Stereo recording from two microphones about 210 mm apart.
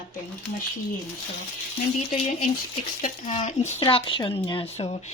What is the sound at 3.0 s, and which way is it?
Speech, 35° left (ahead or behind).